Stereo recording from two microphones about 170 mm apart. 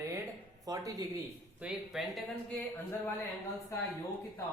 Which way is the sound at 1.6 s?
5° right (ahead or behind).